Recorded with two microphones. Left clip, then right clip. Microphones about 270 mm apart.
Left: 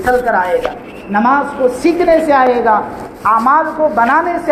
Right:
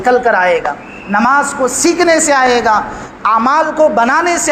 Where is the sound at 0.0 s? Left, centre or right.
Right.